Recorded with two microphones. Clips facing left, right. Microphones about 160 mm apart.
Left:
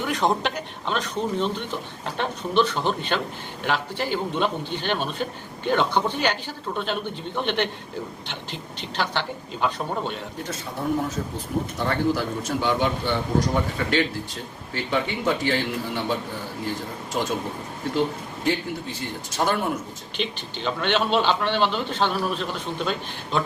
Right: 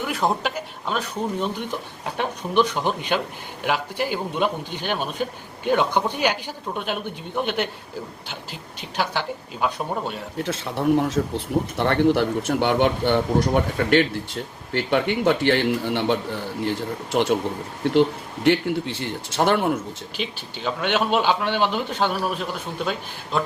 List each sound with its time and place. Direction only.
0.0 s a man's voice: 5° right (ahead or behind)
9.0 s a man's voice: 10° right (ahead or behind)
10.3 s speech: 70° right (ahead or behind)
11.8 s a man's voice: 65° right (ahead or behind)
19.4 s a man's voice: 60° right (ahead or behind)
20.1 s a man's voice: 10° right (ahead or behind)